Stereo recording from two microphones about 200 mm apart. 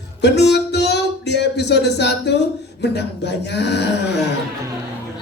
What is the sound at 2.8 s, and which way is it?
A man's voice, 60° left (ahead or behind).